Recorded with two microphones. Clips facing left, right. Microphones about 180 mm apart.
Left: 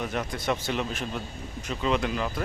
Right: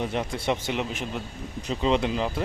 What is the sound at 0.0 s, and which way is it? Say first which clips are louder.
Speech: right 2 dB; 25° right (ahead or behind).